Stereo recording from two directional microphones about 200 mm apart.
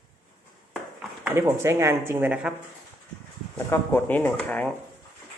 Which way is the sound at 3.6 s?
10° left (ahead or behind).